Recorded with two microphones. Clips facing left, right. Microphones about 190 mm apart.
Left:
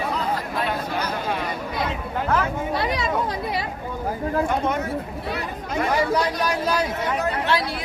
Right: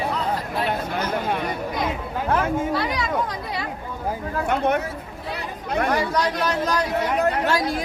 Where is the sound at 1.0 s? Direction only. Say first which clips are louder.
Right 2 dB; 55° right (ahead or behind).